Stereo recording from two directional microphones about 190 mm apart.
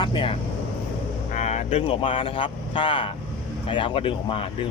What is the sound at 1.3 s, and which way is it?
Speech, 35° left (ahead or behind).